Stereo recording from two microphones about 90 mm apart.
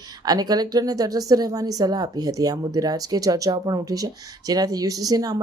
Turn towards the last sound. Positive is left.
turn(degrees=-45)  # may be behind; listen again after turning